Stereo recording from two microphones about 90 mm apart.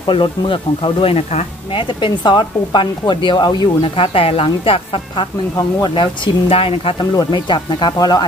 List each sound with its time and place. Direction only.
0.0 s speech: 65° left (ahead or behind)
2.0 s speech: 60° left (ahead or behind); by 5.2 s 90° left
5.9 s speech: 80° left
7.2 s speech: 55° left (ahead or behind)